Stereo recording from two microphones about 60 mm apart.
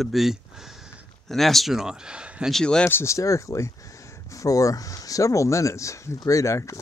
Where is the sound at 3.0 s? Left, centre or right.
Left.